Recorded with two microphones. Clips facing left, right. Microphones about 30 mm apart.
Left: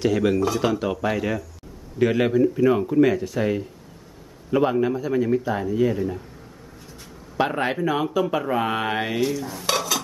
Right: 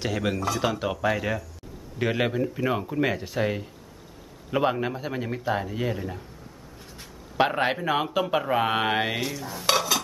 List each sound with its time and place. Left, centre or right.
0.0 s a man's voice: centre
3.0 s a man's voice: right
7.0 s speech: centre